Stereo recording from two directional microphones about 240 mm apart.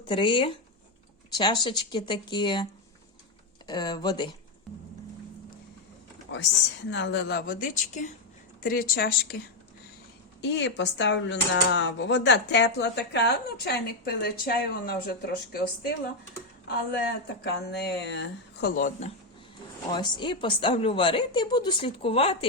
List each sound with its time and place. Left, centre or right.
0.1 s a woman's voice: left
3.7 s speech: centre
6.3 s a woman's voice: left
10.4 s speech: left
17.4 s speech: left
19.9 s a woman's voice: centre